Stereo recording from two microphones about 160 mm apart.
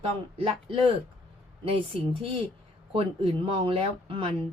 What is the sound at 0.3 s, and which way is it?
Speech, 35° right (ahead or behind).